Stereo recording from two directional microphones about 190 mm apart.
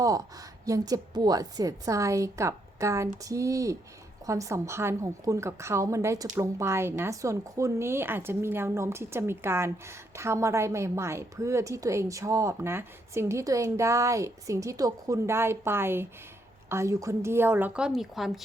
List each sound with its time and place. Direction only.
0.6 s a woman's voice: 20° right (ahead or behind); by 18.3 s centre (ahead or behind)